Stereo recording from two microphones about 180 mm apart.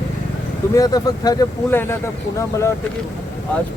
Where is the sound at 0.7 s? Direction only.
20° left (ahead or behind).